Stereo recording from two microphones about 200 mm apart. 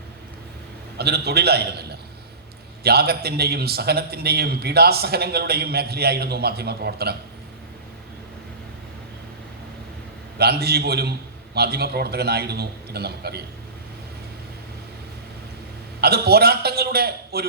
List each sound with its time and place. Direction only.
0.9 s a man's voice: 55° right (ahead or behind)
2.8 s a man's voice: 50° right (ahead or behind)
10.3 s a man's voice: 55° right (ahead or behind)
16.0 s a man's voice: 50° right (ahead or behind)